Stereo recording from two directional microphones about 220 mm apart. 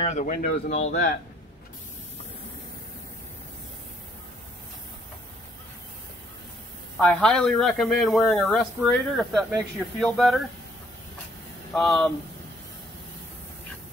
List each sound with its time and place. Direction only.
0.3 s speech: 35° left (ahead or behind)
7.0 s a man's voice: 5° left (ahead or behind)
11.7 s a man's voice: centre (ahead or behind)